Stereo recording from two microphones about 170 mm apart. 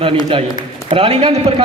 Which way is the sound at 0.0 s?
30° right (ahead or behind).